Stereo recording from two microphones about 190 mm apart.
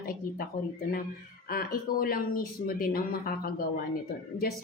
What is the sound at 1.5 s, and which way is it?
Speech, 50° left (ahead or behind).